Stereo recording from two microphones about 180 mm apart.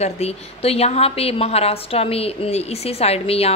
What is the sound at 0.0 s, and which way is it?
A woman's voice, 35° left (ahead or behind).